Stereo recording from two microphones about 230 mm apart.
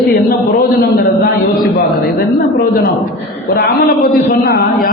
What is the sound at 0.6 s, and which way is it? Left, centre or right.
Speech, left.